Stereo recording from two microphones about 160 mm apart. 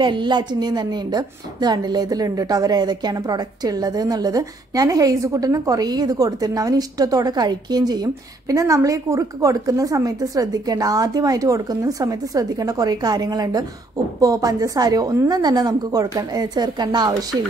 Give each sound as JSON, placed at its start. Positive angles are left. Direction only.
{"t": 0.0, "sound": "a woman's voice", "side_deg": -30}